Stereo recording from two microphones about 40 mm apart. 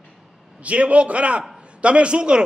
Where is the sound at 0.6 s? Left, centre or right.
Right.